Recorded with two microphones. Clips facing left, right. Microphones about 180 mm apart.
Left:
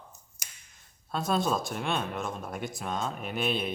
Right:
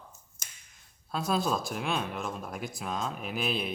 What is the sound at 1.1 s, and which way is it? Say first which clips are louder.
Speech: left 1 dB; centre (ahead or behind).